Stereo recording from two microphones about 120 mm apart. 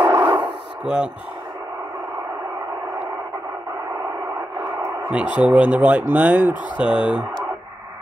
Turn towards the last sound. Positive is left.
turn(degrees=-10)  # may be behind; listen again after turning